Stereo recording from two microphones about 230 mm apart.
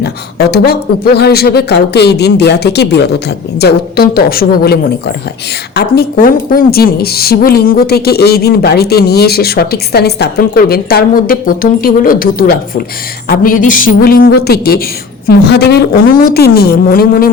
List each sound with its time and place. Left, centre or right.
0.0 s a woman's voice: left